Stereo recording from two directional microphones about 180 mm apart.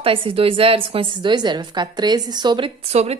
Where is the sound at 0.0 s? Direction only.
30° right (ahead or behind).